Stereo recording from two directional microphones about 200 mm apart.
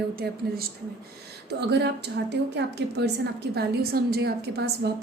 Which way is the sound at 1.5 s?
55° right (ahead or behind).